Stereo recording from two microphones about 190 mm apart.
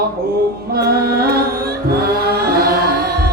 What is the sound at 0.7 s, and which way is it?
Music, 55° right (ahead or behind).